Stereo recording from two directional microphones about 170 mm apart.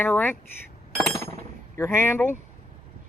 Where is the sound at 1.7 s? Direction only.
15° left (ahead or behind).